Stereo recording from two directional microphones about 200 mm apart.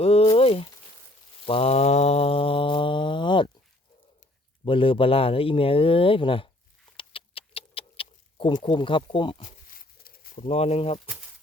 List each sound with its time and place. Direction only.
0.0 s a sound: 30° left (ahead or behind)
1.5 s mantra: 30° left (ahead or behind)
4.6 s speech: 25° left (ahead or behind)
6.9 s rodents: 25° left (ahead or behind)
9.4 s a sound: 40° left (ahead or behind)
10.4 s speech: 30° left (ahead or behind)